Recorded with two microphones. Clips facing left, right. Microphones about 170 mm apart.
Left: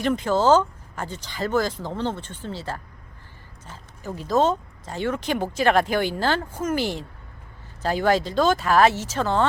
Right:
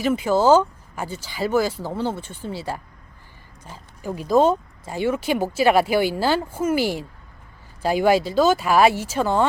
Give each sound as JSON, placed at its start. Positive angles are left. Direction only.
{"t": 0.0, "sound": "speech", "side_deg": -5}